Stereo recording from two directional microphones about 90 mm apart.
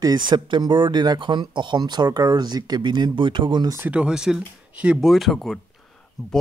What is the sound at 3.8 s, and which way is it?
Speech, 10° right (ahead or behind).